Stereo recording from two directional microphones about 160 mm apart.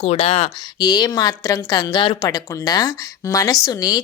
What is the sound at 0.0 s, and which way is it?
Speech, 40° left (ahead or behind).